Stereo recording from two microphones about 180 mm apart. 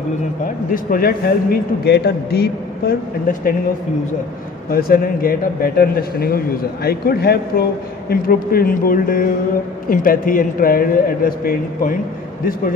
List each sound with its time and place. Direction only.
0.7 s a man's voice: 50° left (ahead or behind)
4.6 s a man's voice: 55° left (ahead or behind)